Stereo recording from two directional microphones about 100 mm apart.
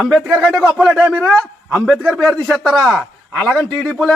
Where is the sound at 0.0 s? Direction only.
5° left (ahead or behind).